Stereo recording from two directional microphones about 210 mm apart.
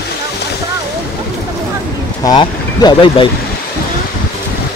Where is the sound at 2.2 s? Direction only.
20° left (ahead or behind).